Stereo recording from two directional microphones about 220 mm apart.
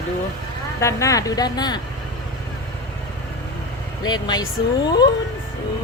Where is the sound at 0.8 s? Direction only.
15° left (ahead or behind).